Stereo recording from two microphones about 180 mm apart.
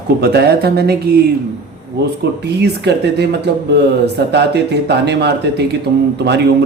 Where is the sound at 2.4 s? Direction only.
70° right (ahead or behind).